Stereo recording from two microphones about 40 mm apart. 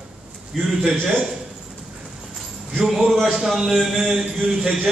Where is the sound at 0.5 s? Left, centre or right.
Centre.